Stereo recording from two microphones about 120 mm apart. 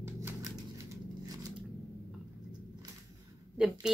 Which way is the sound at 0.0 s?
20° right (ahead or behind).